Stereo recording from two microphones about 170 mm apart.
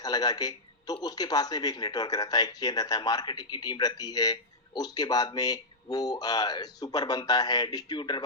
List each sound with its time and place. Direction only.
0.0 s a man's voice: 25° left (ahead or behind)